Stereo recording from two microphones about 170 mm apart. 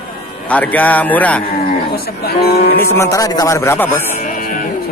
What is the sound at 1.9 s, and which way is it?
Speech, 65° left (ahead or behind).